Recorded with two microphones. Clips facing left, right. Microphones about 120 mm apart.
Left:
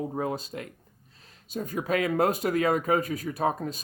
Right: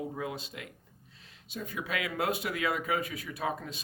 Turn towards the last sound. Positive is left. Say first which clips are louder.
# left 7 dB
turn(degrees=40)  # may be behind; listen again after turning